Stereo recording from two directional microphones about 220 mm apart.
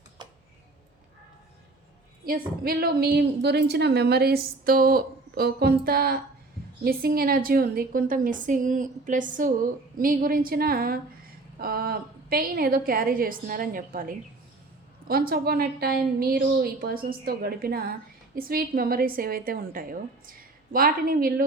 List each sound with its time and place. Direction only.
0.2 s tick-tock: 20° right (ahead or behind)
2.6 s a woman's voice: 45° right (ahead or behind)